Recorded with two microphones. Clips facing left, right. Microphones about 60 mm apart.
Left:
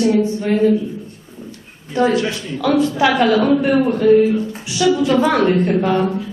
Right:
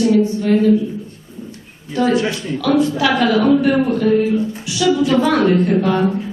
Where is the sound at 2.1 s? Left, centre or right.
Right.